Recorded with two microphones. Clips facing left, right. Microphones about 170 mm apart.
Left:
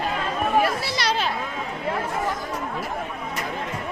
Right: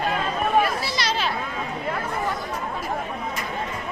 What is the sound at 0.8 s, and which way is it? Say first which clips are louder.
Children playing: left 1 dB; 60° left (ahead or behind).